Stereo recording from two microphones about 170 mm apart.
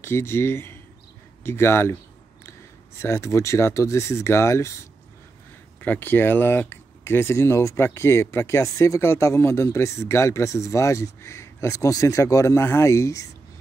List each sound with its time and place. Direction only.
0.0 s speech: 15° left (ahead or behind)
3.0 s speech: 15° left (ahead or behind)
5.8 s speech: 10° left (ahead or behind)